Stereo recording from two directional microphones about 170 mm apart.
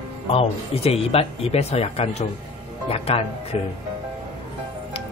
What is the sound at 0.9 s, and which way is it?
Speech, 35° left (ahead or behind).